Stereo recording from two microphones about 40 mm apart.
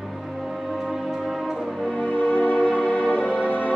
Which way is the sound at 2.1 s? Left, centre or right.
Left.